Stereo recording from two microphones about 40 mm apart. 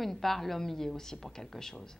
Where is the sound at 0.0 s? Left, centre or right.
Centre.